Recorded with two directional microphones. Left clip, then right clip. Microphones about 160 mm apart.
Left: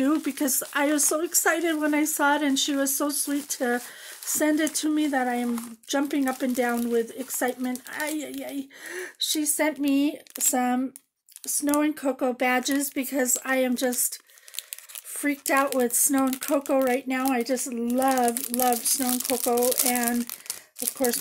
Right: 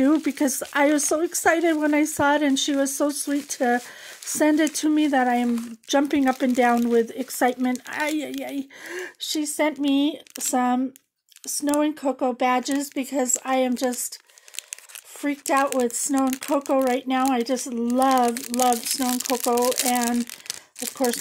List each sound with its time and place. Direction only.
0.0 s speech: 40° right (ahead or behind)
11.8 s a woman's voice: 35° right (ahead or behind)
15.2 s a woman's voice: 35° right (ahead or behind)
16.7 s speech: 40° right (ahead or behind)
18.3 s speech: centre (ahead or behind)
18.7 s speech: 45° right (ahead or behind)